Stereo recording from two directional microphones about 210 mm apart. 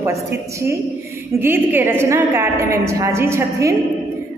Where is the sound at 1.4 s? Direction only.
10° right (ahead or behind).